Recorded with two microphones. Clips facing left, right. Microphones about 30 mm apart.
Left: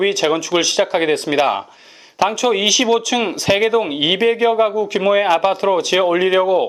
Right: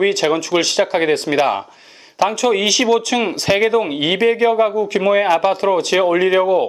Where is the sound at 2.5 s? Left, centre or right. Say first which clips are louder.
Even; centre.